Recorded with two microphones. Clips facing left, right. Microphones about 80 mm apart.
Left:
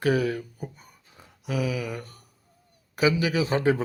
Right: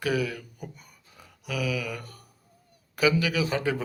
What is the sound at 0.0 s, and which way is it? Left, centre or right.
Speech, left.